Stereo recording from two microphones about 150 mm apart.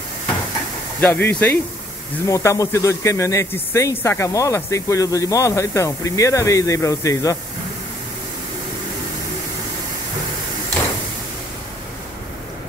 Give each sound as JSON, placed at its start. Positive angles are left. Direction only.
{"t": 1.0, "sound": "a man's voice", "side_deg": 10}